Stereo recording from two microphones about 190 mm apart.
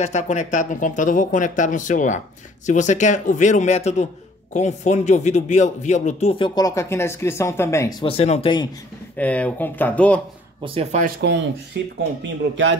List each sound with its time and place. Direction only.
0.0 s speech: 40° left (ahead or behind); by 8.0 s 15° left (ahead or behind)
8.0 s speech: 30° left (ahead or behind)
9.1 s speech: 5° left (ahead or behind)
10.6 s speech: 30° right (ahead or behind)
11.1 s speech: 70° right (ahead or behind)